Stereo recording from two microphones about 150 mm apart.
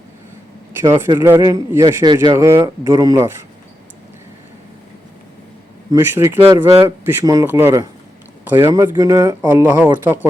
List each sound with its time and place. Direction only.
0.8 s a man's voice: 15° right (ahead or behind)
5.9 s speech: 20° right (ahead or behind)